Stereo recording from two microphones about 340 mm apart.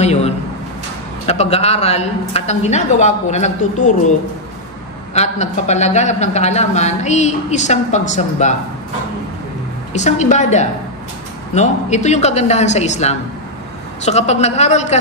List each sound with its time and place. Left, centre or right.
0.0 s a sound: centre
1.2 s a man's voice: centre
5.1 s a man's voice: centre
9.9 s a man's voice: left